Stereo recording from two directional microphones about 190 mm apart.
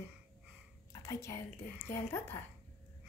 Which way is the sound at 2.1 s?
15° left (ahead or behind).